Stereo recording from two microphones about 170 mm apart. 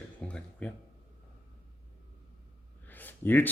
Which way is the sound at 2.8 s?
10° left (ahead or behind).